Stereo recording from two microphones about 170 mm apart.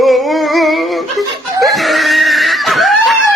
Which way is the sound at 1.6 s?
Centre (ahead or behind).